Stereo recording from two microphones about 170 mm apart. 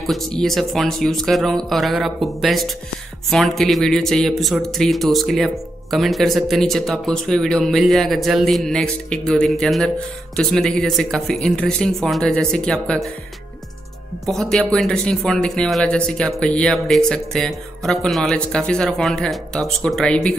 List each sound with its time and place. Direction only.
0.0 s speech: centre (ahead or behind)
14.2 s speech: centre (ahead or behind)